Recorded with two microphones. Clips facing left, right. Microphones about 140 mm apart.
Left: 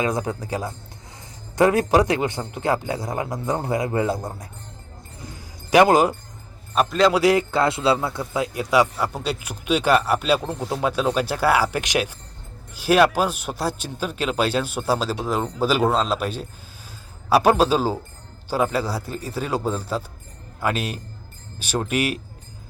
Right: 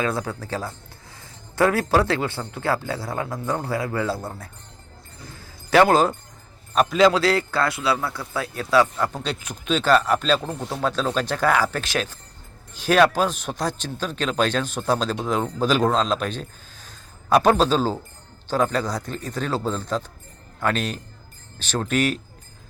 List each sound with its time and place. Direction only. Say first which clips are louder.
0.0 s a man's voice: left 2 dB; 15° left (ahead or behind)
5.4 s music: left 1 dB; 15° left (ahead or behind)
6.7 s a man's voice: right 1 dB; centre (ahead or behind)
7.1 s a man's voice: left 3 dB; 15° left (ahead or behind)